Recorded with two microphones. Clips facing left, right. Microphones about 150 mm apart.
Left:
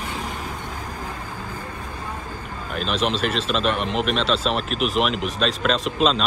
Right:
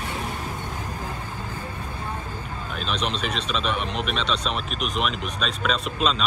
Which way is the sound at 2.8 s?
Centre (ahead or behind).